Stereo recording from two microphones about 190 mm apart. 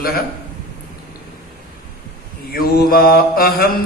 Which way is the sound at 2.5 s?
50° left (ahead or behind).